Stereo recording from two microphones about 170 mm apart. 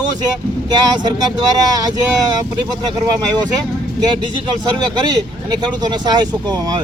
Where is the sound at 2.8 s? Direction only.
25° right (ahead or behind).